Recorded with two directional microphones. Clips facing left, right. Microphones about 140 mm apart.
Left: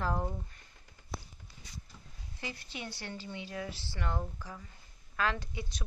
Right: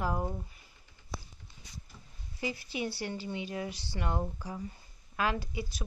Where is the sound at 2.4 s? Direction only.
10° right (ahead or behind).